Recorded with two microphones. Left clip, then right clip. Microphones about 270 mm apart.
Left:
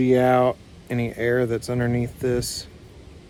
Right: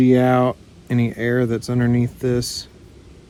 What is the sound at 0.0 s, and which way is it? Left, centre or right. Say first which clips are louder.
Speech: right 2 dB; right.